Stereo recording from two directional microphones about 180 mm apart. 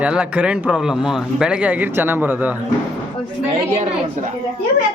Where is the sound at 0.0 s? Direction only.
5° right (ahead or behind).